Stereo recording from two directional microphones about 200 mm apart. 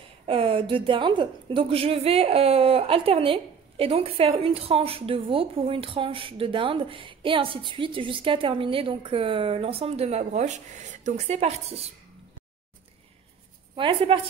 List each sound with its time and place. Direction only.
0.3 s a woman's voice: 25° right (ahead or behind)
13.7 s a woman's voice: 25° right (ahead or behind)